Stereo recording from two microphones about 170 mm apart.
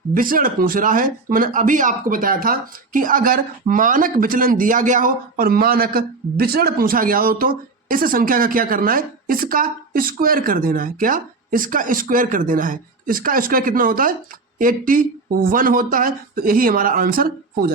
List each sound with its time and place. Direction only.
0.1 s speech: 55° right (ahead or behind)